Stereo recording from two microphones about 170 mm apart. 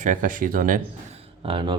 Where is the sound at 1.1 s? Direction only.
30° right (ahead or behind).